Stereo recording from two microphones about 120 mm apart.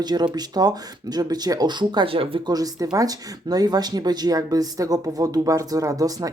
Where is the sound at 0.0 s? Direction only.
35° right (ahead or behind).